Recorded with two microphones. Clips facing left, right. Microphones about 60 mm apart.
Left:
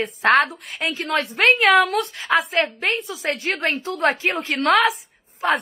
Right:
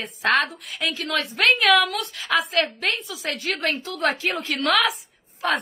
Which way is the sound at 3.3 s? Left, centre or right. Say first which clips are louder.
Left 2 dB; left.